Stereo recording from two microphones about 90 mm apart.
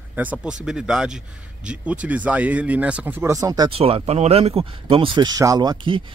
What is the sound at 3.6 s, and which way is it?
Speech, 90° right.